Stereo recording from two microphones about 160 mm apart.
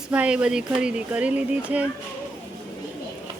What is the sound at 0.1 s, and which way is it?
Speech, 10° right (ahead or behind).